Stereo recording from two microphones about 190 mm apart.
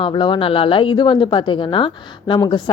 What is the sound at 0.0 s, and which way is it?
A woman's voice, 25° left (ahead or behind).